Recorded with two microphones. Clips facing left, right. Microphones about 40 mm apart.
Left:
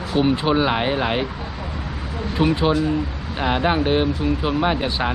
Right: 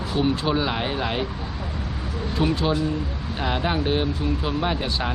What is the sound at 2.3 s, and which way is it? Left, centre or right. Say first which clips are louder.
Speech: left 4 dB; left.